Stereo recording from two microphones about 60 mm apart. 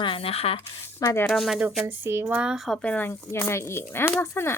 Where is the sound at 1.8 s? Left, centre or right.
Right.